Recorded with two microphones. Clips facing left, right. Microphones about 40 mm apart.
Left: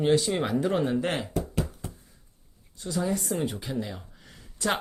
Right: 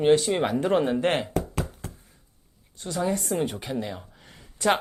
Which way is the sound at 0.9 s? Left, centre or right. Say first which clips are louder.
Right 4 dB; right.